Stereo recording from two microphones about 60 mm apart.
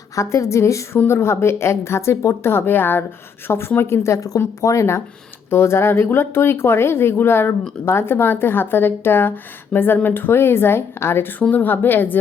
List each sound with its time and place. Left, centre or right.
0.2 s a woman's voice: left
0.9 s speech: left
4.6 s a woman's voice: left
5.5 s a woman's voice: left